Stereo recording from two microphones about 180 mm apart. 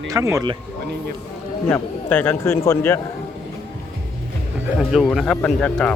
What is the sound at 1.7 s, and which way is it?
Speech, 10° left (ahead or behind).